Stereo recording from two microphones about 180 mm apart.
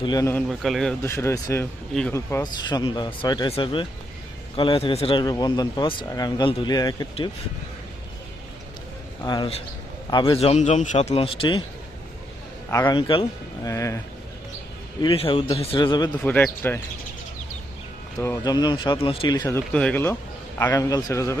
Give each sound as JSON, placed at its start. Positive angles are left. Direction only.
{"t": 0.0, "sound": "speech", "side_deg": 20}
{"t": 0.3, "sound": "a man's voice", "side_deg": 0}
{"t": 1.0, "sound": "a man's voice", "side_deg": 15}
{"t": 1.9, "sound": "speech", "side_deg": 5}
{"t": 2.1, "sound": "speech", "side_deg": 20}
{"t": 9.2, "sound": "a man's voice", "side_deg": 25}
{"t": 12.7, "sound": "a man's voice", "side_deg": 15}
{"t": 13.0, "sound": "speech", "side_deg": 30}
{"t": 13.7, "sound": "a man's voice", "side_deg": 15}
{"t": 15.0, "sound": "a man's voice", "side_deg": 30}
{"t": 16.1, "sound": "a man's voice", "side_deg": 10}
{"t": 18.2, "sound": "a man's voice", "side_deg": 20}